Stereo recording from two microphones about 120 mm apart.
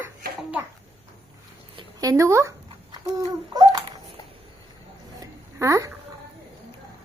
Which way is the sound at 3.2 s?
30° right (ahead or behind).